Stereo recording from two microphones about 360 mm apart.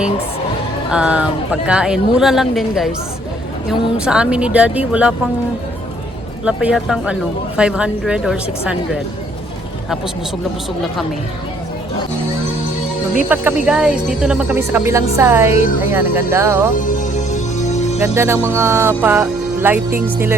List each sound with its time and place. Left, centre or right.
0.9 s speech: centre
3.9 s speech: centre
6.4 s speech: centre
13.2 s speech: centre
16.3 s music: centre
16.7 s music: left
18.1 s music: centre
18.9 s speech: centre